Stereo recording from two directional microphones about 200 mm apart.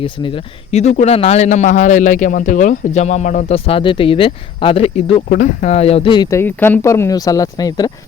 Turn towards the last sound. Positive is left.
turn(degrees=20)  # may be behind; listen again after turning